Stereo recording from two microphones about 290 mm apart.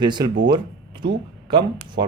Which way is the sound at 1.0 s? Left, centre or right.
Centre.